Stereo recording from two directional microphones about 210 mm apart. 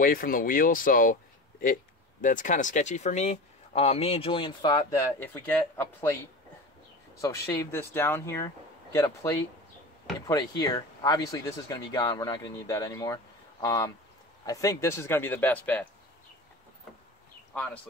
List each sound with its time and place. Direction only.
0.0 s speech: 40° left (ahead or behind)
2.2 s speech: 40° left (ahead or behind); by 6.1 s 10° left (ahead or behind)
7.2 s speech: 15° left (ahead or behind)